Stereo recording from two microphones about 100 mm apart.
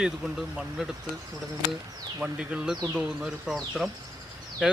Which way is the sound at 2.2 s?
5° right (ahead or behind).